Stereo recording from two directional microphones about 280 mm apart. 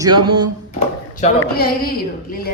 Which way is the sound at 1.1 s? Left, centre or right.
Left.